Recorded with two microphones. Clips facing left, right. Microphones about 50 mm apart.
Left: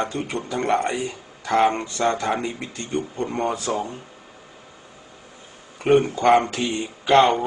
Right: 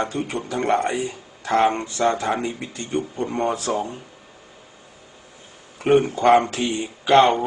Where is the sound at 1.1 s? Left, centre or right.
Right.